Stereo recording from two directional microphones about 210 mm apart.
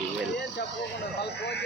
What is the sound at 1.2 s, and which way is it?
Speech, 55° left (ahead or behind).